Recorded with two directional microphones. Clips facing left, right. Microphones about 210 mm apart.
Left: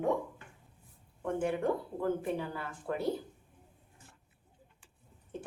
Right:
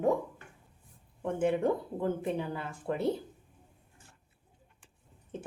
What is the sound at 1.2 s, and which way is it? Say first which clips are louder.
A woman's voice: right 3 dB; 20° right (ahead or behind).